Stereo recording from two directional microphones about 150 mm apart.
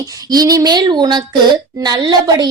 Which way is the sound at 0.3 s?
25° right (ahead or behind).